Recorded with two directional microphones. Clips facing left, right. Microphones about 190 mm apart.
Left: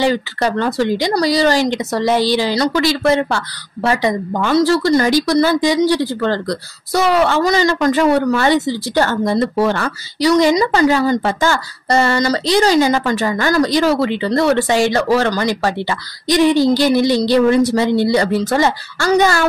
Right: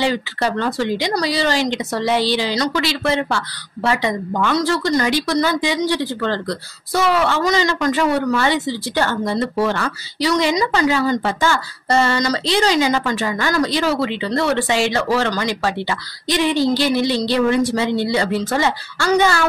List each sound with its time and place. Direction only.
0.0 s a woman's voice: 45° left (ahead or behind)
16.7 s a woman's voice: 45° left (ahead or behind)